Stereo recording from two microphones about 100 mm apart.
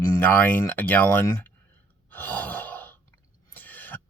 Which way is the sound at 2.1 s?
15° left (ahead or behind).